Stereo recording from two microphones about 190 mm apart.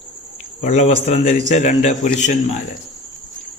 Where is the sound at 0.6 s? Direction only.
40° left (ahead or behind).